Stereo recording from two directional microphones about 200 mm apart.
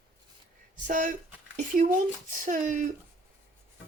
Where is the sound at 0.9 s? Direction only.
40° right (ahead or behind).